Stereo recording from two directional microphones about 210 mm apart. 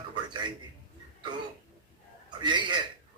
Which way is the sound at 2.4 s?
20° right (ahead or behind).